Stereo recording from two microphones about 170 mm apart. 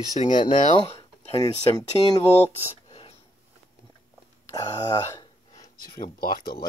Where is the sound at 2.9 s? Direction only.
35° left (ahead or behind).